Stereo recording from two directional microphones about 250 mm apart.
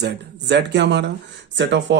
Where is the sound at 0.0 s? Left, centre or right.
Right.